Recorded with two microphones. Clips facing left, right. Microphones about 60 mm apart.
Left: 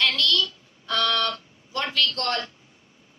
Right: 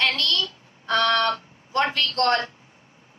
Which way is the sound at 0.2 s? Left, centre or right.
Right.